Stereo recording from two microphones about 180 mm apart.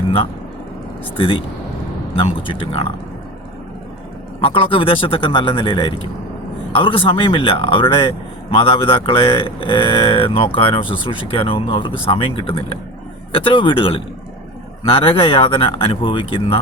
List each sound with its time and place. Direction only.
1.1 s speech: 30° left (ahead or behind)
4.4 s speech: 30° left (ahead or behind)